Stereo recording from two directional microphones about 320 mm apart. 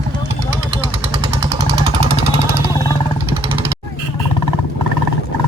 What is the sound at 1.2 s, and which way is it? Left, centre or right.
Jackhammer, centre.